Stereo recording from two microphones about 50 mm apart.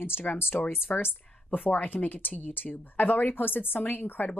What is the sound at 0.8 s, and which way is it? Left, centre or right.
Speech, left.